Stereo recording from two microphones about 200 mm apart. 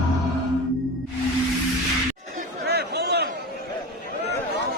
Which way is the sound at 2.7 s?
55° right (ahead or behind).